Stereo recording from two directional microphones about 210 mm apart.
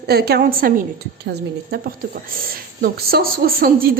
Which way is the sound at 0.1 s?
45° right (ahead or behind).